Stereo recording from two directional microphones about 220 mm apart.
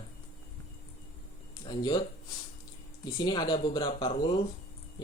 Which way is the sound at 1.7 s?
20° left (ahead or behind).